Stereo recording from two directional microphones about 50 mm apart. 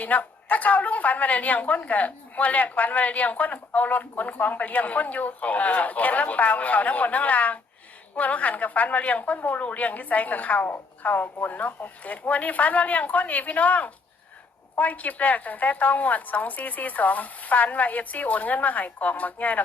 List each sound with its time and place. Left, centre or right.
0.0 s a woman's voice: left